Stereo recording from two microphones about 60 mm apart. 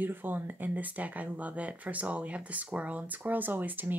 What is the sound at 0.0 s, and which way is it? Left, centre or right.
Speech, right.